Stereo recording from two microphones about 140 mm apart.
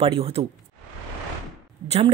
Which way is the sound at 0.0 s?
45° right (ahead or behind).